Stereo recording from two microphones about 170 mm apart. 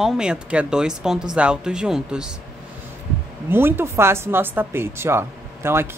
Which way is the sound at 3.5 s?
15° right (ahead or behind).